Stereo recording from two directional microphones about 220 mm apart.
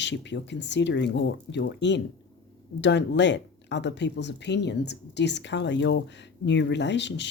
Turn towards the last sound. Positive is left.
turn(degrees=50)  # may be behind; listen again after turning